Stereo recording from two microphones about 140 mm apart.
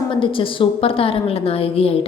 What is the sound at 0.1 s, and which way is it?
A woman's voice, 40° left (ahead or behind).